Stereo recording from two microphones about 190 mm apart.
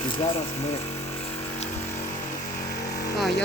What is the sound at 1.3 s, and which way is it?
Vehicle, 35° left (ahead or behind).